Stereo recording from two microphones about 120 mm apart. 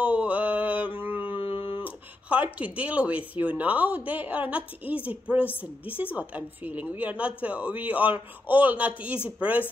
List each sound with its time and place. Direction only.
0.0 s mantra: 15° right (ahead or behind)
1.2 s a sound: 45° left (ahead or behind)
1.8 s speech: 15° right (ahead or behind)
6.1 s speech: 15° right (ahead or behind)